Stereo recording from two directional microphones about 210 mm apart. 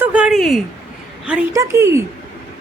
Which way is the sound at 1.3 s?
15° right (ahead or behind).